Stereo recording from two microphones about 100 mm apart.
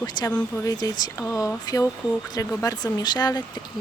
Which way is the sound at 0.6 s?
35° left (ahead or behind).